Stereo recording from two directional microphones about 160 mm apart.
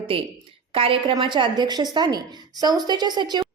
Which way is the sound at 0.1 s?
35° right (ahead or behind).